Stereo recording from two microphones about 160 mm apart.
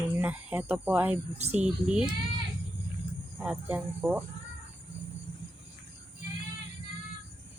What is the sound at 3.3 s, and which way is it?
Speech, 10° right (ahead or behind).